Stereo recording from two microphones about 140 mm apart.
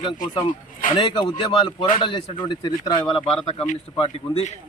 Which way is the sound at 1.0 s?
40° left (ahead or behind).